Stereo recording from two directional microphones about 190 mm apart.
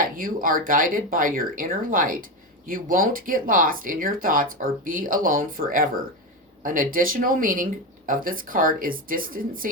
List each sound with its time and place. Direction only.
0.2 s speech: 45° right (ahead or behind)